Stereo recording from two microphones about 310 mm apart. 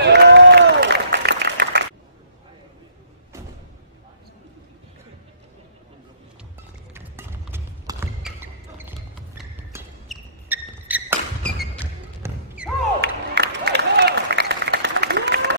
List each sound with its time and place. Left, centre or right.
0.0 s applause: right
6.9 s music: centre
9.4 s a sound: centre
12.2 s music: centre
13.0 s applause: right